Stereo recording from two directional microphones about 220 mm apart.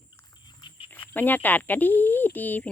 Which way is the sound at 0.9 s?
10° left (ahead or behind).